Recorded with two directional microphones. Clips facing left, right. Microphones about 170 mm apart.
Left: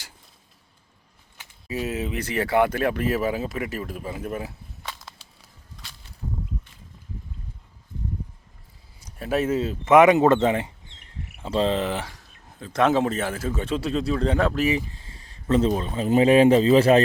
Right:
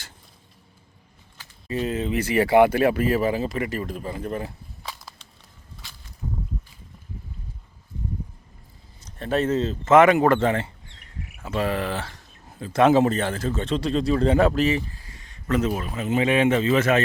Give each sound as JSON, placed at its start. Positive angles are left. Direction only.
{"t": 1.6, "sound": "speech", "side_deg": 5}
{"t": 2.1, "sound": "speech", "side_deg": -10}
{"t": 9.0, "sound": "speech", "side_deg": 10}
{"t": 12.1, "sound": "a man's voice", "side_deg": -5}
{"t": 14.6, "sound": "speech", "side_deg": 10}
{"t": 14.9, "sound": "a sound", "side_deg": 30}
{"t": 15.8, "sound": "speech", "side_deg": 30}